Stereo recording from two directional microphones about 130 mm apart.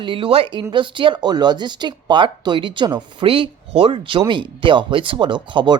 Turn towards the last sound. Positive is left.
turn(degrees=-40)  # may be behind; listen again after turning